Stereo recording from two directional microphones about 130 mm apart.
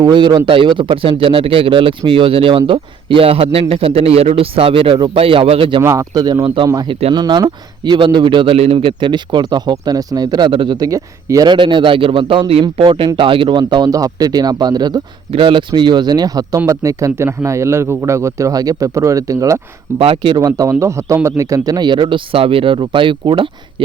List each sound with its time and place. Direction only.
0.0 s a man's voice: 35° right (ahead or behind)
5.8 s a man's voice: 25° right (ahead or behind)
20.0 s a man's voice: 40° right (ahead or behind)